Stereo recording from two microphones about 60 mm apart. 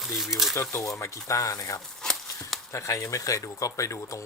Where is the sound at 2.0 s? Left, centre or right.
Centre.